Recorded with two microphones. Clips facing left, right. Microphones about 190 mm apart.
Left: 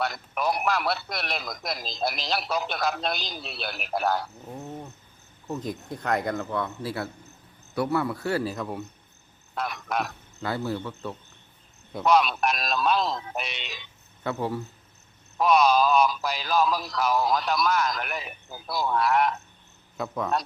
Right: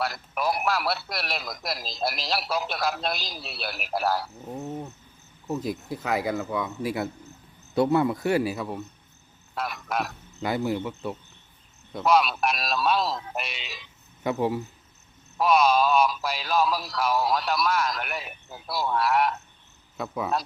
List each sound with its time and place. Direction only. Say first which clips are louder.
0.0 s a man's voice: even; centre (ahead or behind)
4.5 s a sound: right 4 dB; 20° right (ahead or behind)
5.5 s a man's voice: right 3 dB; 5° right (ahead or behind)
9.6 s a man's voice: even; centre (ahead or behind)
10.4 s speech: right 3 dB; 15° right (ahead or behind)
11.9 s a man's voice: even; centre (ahead or behind)
14.3 s speech: right 3 dB; 15° right (ahead or behind)
15.4 s a man's voice: even; centre (ahead or behind)